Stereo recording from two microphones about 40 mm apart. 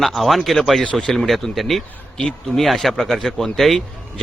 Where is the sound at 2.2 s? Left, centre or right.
Centre.